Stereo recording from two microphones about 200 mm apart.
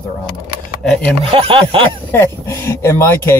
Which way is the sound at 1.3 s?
25° right (ahead or behind).